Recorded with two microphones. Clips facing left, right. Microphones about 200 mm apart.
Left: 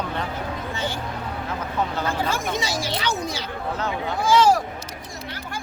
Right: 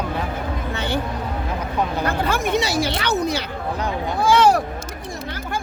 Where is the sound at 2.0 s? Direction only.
60° right (ahead or behind).